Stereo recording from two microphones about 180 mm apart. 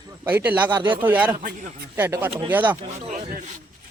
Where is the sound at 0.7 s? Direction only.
25° right (ahead or behind).